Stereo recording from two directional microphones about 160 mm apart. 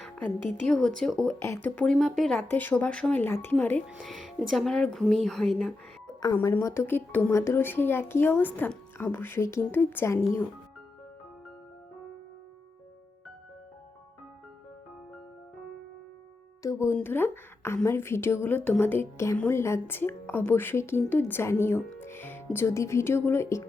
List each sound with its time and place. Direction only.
0.0 s speech: 10° left (ahead or behind)
3.8 s a woman's voice: 5° right (ahead or behind); by 10.4 s 20° left (ahead or behind)
16.6 s speech: 20° left (ahead or behind)